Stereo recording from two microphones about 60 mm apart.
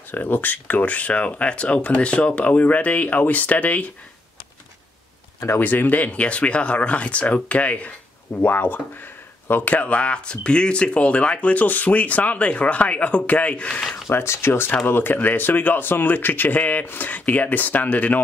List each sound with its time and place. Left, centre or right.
0.1 s speech: left
5.6 s speech: left
14.1 s speech: left